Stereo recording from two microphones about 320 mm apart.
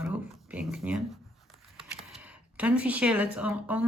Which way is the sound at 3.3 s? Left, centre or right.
Centre.